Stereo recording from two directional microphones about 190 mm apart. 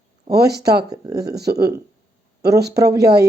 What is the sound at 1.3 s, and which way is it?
Speech, 60° right (ahead or behind).